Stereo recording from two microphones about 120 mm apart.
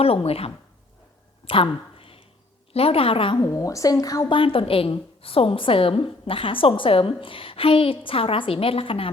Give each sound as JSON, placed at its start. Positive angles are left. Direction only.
{"t": 0.0, "sound": "speech", "side_deg": 55}
{"t": 1.5, "sound": "a sound", "side_deg": 50}
{"t": 2.7, "sound": "a woman's voice", "side_deg": 55}
{"t": 3.3, "sound": "a woman's voice", "side_deg": 30}
{"t": 4.3, "sound": "a woman's voice", "side_deg": 50}